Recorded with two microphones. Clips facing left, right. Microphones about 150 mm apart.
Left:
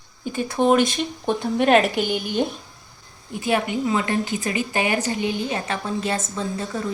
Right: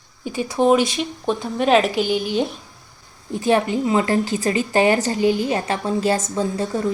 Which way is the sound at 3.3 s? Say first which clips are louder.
Right 4 dB; 35° right (ahead or behind).